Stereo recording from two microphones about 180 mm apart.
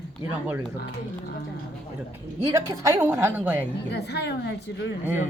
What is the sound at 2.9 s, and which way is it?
Speech, 15° right (ahead or behind).